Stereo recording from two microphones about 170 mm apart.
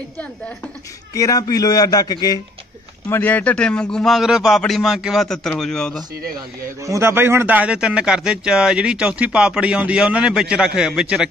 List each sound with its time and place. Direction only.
1.1 s a man's voice: 20° left (ahead or behind)
3.1 s speech: 10° left (ahead or behind)
6.9 s speech: 15° right (ahead or behind)